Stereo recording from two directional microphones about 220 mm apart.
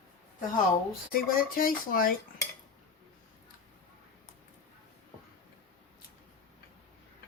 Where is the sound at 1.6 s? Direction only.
40° left (ahead or behind).